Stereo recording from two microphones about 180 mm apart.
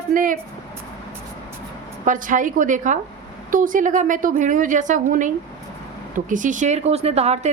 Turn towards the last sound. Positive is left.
turn(degrees=-35)  # may be behind; listen again after turning